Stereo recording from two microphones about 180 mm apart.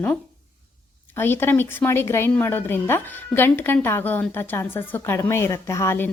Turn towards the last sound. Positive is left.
turn(degrees=15)  # may be behind; listen again after turning